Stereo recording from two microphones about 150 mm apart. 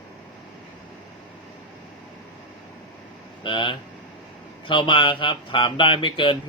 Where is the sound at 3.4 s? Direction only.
35° left (ahead or behind).